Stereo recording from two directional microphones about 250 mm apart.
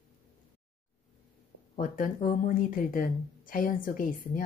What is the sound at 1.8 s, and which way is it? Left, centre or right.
A woman's voice, left.